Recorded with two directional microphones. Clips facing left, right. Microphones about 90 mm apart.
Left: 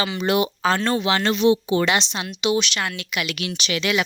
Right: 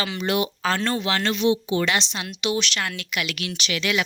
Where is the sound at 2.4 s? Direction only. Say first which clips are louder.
Left 3 dB; 15° left (ahead or behind).